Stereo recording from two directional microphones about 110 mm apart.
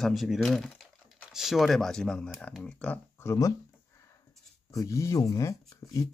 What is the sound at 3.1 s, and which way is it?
Speech, 25° left (ahead or behind).